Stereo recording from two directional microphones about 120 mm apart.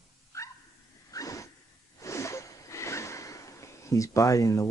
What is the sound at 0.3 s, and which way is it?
Dog, 25° left (ahead or behind).